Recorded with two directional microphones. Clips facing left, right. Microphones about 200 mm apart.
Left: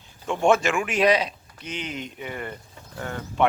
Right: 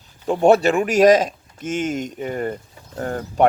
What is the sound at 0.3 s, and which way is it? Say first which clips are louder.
Speech: right 6 dB; 35° right (ahead or behind).